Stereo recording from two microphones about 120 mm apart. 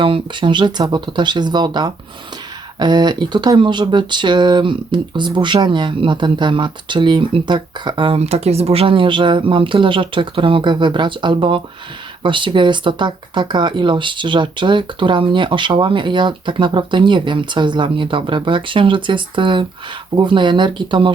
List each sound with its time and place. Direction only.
0.0 s speech: 45° right (ahead or behind)
8.2 s speech: 60° right (ahead or behind); by 21.1 s 40° right (ahead or behind)